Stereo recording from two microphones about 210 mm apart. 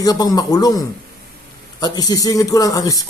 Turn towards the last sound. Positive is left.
turn(degrees=15)  # may be behind; listen again after turning